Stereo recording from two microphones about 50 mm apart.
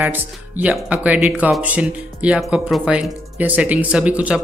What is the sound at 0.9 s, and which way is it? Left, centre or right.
Speech, right.